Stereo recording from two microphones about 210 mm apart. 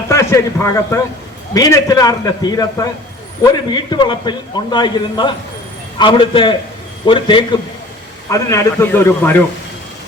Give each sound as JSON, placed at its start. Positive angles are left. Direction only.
{"t": 0.1, "sound": "a man's voice", "side_deg": 15}